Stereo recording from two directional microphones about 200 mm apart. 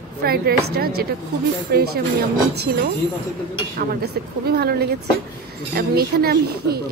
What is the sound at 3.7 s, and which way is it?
Speech, 55° right (ahead or behind).